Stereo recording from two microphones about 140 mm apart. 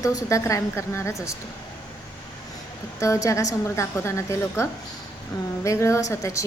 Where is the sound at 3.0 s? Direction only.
20° left (ahead or behind).